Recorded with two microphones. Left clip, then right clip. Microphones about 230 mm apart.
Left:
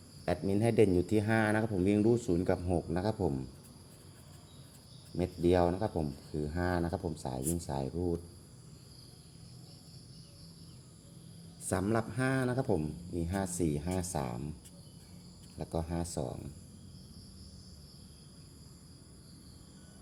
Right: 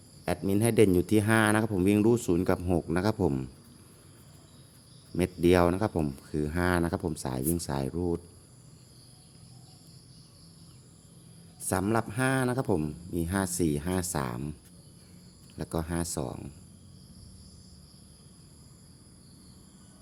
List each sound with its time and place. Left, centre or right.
0.3 s speech: right
5.1 s speech: right
11.6 s speech: centre
15.5 s speech: right